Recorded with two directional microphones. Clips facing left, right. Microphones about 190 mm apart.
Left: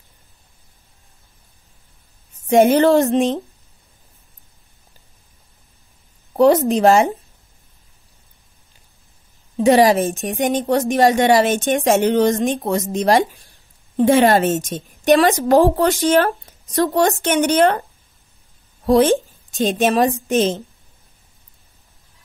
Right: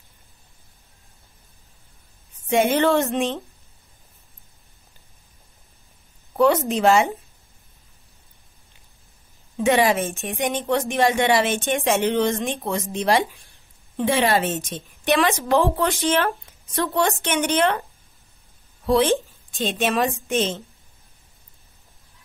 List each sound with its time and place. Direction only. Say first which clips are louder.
2.5 s a woman's voice: left 6 dB; 40° left (ahead or behind)
6.3 s a woman's voice: left 5 dB; 40° left (ahead or behind)
9.6 s a woman's voice: left 6 dB; 35° left (ahead or behind)
18.9 s a woman's voice: left 5 dB; 45° left (ahead or behind)